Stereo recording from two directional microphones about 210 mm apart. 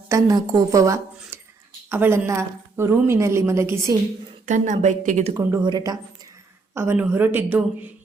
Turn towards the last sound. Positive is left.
turn(degrees=-10)  # may be behind; listen again after turning